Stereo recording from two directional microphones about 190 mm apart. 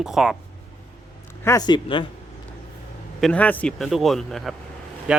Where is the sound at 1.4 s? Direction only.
20° left (ahead or behind).